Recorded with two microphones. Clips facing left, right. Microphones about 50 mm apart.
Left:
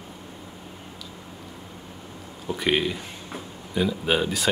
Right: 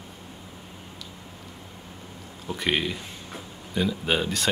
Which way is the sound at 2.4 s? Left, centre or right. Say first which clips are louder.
Left 3 dB; centre.